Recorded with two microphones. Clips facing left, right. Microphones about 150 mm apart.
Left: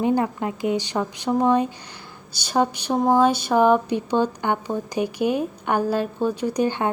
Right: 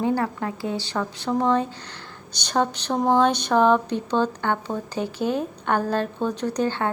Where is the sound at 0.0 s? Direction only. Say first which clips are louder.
Left 2 dB; 15° left (ahead or behind).